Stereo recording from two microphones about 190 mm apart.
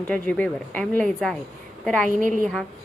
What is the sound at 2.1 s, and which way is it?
Speech, 45° right (ahead or behind).